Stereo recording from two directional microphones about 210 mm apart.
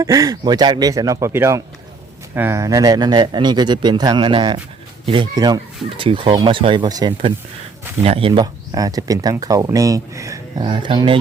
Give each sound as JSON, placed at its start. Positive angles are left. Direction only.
{"t": 0.0, "sound": "speech", "side_deg": -15}
{"t": 8.3, "sound": "speech", "side_deg": -15}